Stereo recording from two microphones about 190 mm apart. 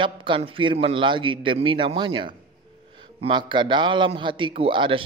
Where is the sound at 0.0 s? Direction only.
25° right (ahead or behind).